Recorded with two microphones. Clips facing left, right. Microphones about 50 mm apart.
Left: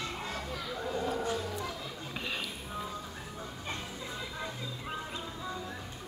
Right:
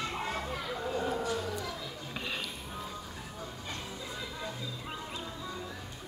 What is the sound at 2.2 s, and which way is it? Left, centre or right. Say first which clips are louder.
Music: even; centre.